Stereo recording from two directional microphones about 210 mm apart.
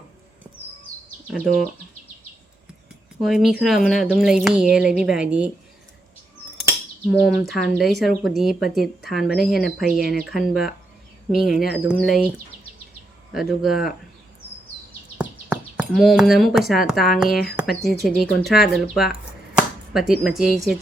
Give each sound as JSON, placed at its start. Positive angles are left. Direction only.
{"t": 1.3, "sound": "a woman's voice", "side_deg": 0}
{"t": 3.2, "sound": "a woman's voice", "side_deg": 0}
{"t": 7.1, "sound": "a woman's voice", "side_deg": 0}
{"t": 13.3, "sound": "a woman's voice", "side_deg": 0}
{"t": 15.2, "sound": "a woman's voice", "side_deg": -5}
{"t": 19.5, "sound": "chopping", "side_deg": 0}